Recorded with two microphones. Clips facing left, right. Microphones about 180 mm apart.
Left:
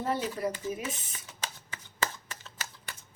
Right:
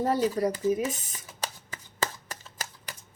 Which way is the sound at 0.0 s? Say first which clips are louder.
Right 6 dB; 40° right (ahead or behind).